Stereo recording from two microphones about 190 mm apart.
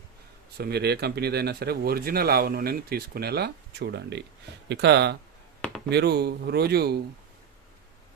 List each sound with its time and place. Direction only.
0.5 s speech: 55° right (ahead or behind)